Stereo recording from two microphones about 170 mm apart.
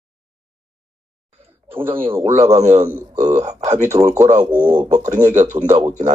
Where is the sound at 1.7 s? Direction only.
10° right (ahead or behind).